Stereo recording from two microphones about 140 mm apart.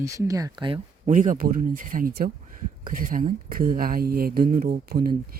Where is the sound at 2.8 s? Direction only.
80° right.